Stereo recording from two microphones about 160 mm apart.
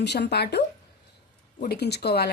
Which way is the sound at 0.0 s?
90° left.